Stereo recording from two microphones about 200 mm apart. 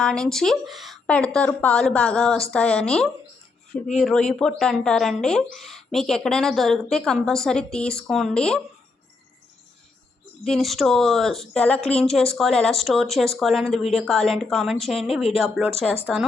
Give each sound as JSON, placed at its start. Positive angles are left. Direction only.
{"t": 0.0, "sound": "speech", "side_deg": 5}
{"t": 10.4, "sound": "speech", "side_deg": 0}